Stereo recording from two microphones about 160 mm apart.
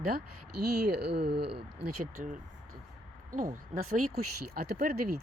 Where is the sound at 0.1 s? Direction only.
90° right.